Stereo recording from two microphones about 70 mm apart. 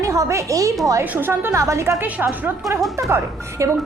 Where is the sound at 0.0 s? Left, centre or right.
Right.